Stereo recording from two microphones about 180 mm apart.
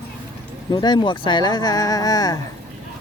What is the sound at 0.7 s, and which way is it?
Speech, 25° left (ahead or behind).